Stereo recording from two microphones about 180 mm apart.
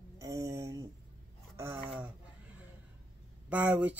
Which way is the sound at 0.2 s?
15° right (ahead or behind).